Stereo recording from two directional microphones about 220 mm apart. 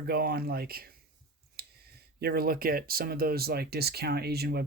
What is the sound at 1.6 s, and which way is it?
Clicking, 45° right (ahead or behind).